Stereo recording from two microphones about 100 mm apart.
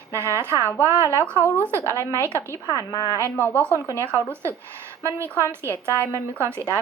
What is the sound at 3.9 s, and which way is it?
Speech, 30° right (ahead or behind).